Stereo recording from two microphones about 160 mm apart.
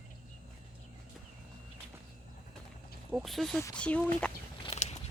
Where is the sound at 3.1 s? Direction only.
Centre (ahead or behind).